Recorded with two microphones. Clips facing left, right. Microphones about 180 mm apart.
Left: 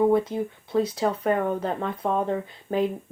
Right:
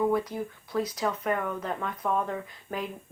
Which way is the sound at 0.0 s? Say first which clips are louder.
Left 6 dB; 25° left (ahead or behind).